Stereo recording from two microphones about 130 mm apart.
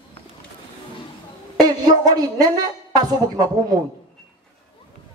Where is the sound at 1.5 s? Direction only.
30° right (ahead or behind).